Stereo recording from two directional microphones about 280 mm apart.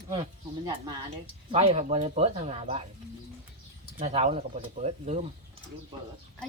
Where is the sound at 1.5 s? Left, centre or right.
Right.